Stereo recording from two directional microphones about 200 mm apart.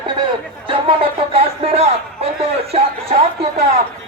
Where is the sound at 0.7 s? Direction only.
25° right (ahead or behind).